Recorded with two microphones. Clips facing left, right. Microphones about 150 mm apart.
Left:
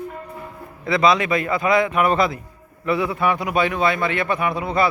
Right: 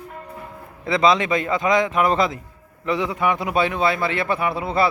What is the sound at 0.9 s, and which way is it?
A man's voice, 25° right (ahead or behind).